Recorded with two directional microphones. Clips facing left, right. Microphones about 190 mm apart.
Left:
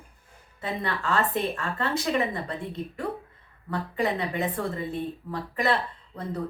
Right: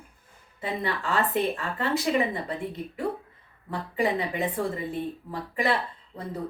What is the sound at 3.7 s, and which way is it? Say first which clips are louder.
Speech: right 1 dB; 15° right (ahead or behind).